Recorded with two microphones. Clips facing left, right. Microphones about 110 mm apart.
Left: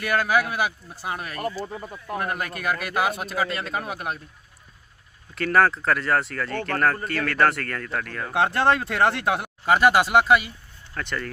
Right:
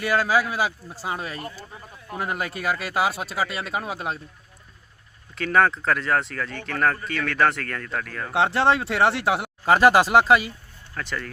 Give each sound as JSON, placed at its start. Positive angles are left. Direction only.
{"t": 0.0, "sound": "speech", "side_deg": -20}
{"t": 1.4, "sound": "speech", "side_deg": 45}
{"t": 1.7, "sound": "speech", "side_deg": 60}
{"t": 2.1, "sound": "speech", "side_deg": -20}
{"t": 5.3, "sound": "speech", "side_deg": 0}
{"t": 8.3, "sound": "speech", "side_deg": -20}
{"t": 10.9, "sound": "speech", "side_deg": 0}